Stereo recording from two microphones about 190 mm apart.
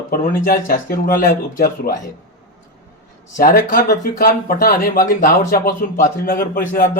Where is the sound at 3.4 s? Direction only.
50° left (ahead or behind).